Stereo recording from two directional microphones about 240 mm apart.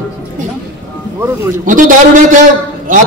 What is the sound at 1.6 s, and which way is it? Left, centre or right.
Speech, right.